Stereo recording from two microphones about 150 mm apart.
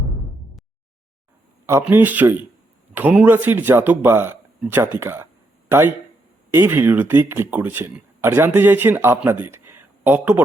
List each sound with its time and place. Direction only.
1.6 s speech: 15° right (ahead or behind)
6.5 s speech: 15° right (ahead or behind)